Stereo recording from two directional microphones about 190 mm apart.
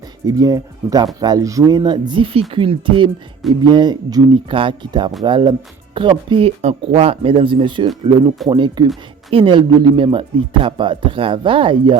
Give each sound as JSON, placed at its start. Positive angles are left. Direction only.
{"t": 0.3, "sound": "speech", "side_deg": -20}